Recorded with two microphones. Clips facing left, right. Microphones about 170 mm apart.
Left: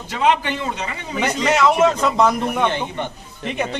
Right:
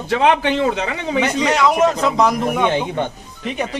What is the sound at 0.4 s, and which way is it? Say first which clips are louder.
Speech: right 7 dB; 75° right (ahead or behind).